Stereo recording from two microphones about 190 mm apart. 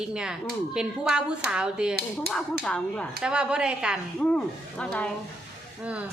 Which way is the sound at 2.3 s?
55° right (ahead or behind).